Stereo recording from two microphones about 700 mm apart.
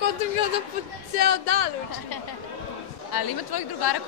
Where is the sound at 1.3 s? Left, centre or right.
Left.